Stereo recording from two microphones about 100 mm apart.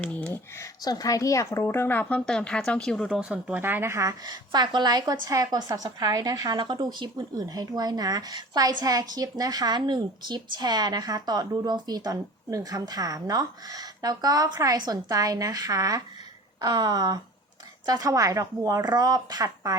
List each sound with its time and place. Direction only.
0.0 s a sound: 10° left (ahead or behind)
0.5 s a woman's voice: 35° left (ahead or behind); by 3.1 s 5° left (ahead or behind)
3.1 s speech: 10° right (ahead or behind); by 4.1 s 30° right (ahead or behind)
4.2 s a woman's voice: 45° right (ahead or behind)